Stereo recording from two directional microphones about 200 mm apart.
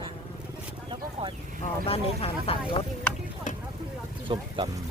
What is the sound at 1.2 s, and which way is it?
Speech, 30° right (ahead or behind).